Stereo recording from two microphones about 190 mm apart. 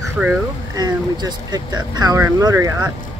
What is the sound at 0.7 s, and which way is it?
Speech, 20° right (ahead or behind).